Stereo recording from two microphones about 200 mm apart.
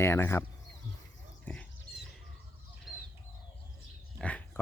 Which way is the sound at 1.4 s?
5° left (ahead or behind).